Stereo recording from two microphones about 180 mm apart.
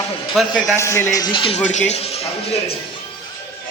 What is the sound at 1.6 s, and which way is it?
Speech, 40° left (ahead or behind).